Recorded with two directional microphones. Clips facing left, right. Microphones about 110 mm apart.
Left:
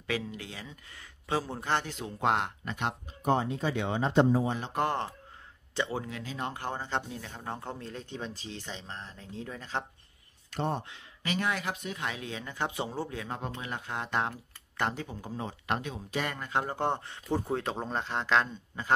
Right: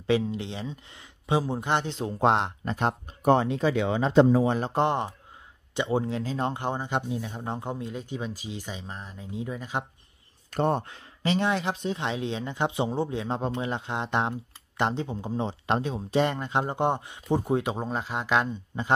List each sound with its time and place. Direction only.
0.0 s speech: 25° right (ahead or behind)
3.1 s speech: 65° right (ahead or behind); by 3.8 s 90° right
4.7 s speech: 20° right (ahead or behind)
6.6 s speech: 15° right (ahead or behind)
10.5 s speech: 55° right (ahead or behind)
11.2 s speech: 25° right (ahead or behind)